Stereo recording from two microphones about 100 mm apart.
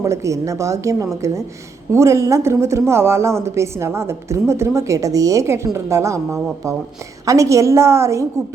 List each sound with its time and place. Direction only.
0.0 s a woman's voice: 30° right (ahead or behind)